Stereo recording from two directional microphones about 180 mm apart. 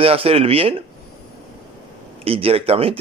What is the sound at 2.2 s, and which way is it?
Speech, 30° right (ahead or behind).